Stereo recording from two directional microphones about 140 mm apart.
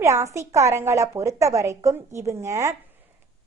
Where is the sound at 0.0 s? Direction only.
20° right (ahead or behind).